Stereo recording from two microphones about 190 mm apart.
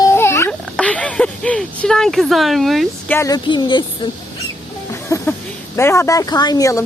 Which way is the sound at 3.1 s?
15° left (ahead or behind).